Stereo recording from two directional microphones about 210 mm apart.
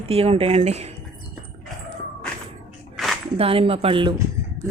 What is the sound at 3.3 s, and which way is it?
Speech, 25° right (ahead or behind).